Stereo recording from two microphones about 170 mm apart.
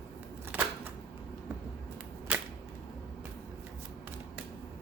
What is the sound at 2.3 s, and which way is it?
Cap gun, 5° right (ahead or behind).